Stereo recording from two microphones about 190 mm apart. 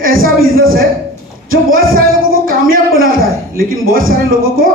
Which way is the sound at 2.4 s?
50° right (ahead or behind).